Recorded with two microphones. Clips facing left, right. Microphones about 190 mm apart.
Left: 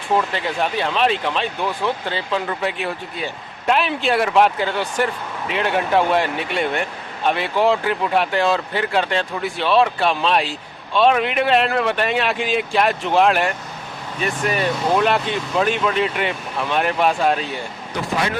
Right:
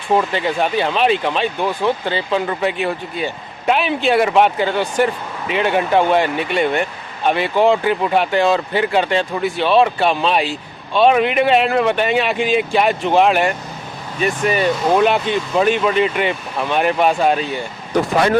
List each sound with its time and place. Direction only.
0.3 s speech: centre (ahead or behind)
17.9 s speech: 45° right (ahead or behind)